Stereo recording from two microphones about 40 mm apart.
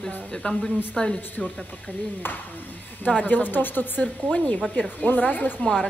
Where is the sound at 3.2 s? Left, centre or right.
Left.